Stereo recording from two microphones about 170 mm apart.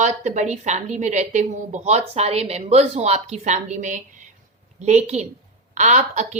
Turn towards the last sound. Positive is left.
turn(degrees=-45)  # may be behind; listen again after turning